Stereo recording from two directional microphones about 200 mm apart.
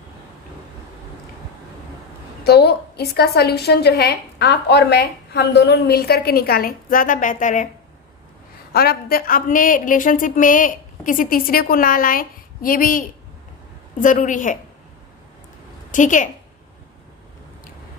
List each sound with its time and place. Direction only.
2.4 s a woman's voice: 55° left (ahead or behind)
8.7 s a woman's voice: 50° left (ahead or behind)
15.9 s a woman's voice: 40° left (ahead or behind)